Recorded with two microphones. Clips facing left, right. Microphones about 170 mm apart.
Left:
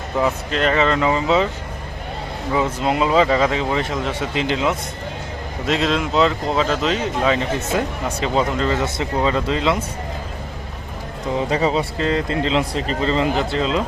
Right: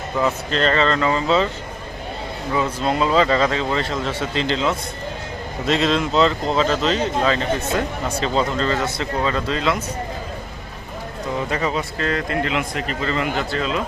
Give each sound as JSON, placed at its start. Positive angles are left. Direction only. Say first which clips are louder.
{"t": 0.2, "sound": "speech", "louder": "left 1 dB", "side_deg": 10}
{"t": 2.6, "sound": "speech", "louder": "left 1 dB", "side_deg": 15}
{"t": 11.3, "sound": "speech", "louder": "left 4 dB", "side_deg": 30}